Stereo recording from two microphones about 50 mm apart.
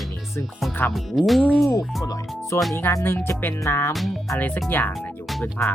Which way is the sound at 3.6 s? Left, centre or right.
Left.